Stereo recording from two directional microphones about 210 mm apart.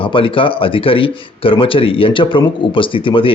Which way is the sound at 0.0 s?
25° left (ahead or behind).